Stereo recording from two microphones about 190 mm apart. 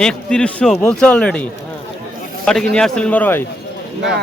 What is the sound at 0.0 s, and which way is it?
A man's voice, 5° left (ahead or behind).